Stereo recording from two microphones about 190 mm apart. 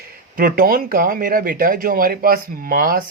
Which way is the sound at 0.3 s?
50° right (ahead or behind).